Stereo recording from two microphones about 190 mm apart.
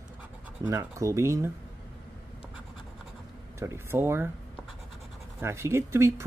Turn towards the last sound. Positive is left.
turn(degrees=-15)  # may be behind; listen again after turning